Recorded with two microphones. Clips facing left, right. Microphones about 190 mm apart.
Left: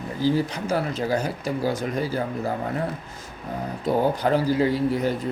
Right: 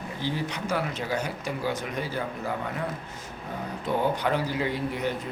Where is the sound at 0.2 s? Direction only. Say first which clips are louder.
Left 8 dB; 35° left (ahead or behind).